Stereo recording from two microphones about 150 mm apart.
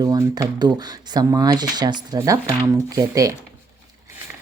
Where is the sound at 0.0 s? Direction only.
25° right (ahead or behind).